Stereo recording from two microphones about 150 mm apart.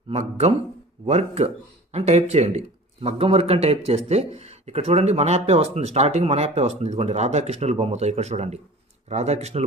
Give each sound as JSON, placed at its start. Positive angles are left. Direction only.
{"t": 0.1, "sound": "speech", "side_deg": -45}